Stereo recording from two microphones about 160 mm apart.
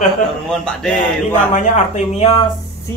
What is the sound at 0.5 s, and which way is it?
Speech, 5° left (ahead or behind).